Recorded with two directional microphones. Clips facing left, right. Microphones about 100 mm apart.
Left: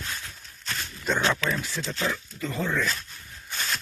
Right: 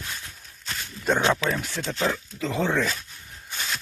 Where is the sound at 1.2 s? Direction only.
15° right (ahead or behind).